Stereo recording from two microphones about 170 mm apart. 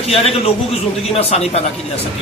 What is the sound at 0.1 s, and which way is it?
A man's voice, 35° left (ahead or behind).